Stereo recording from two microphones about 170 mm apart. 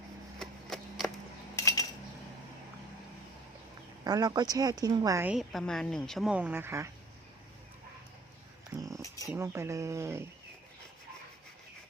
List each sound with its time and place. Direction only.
0.3 s a sound: 5° left (ahead or behind)
1.5 s cutlery: 20° left (ahead or behind)
4.0 s speech: 20° right (ahead or behind)
5.3 s speech: centre (ahead or behind); by 6.9 s 15° right (ahead or behind)
8.7 s a sound: 20° right (ahead or behind)
9.3 s speech: 15° right (ahead or behind)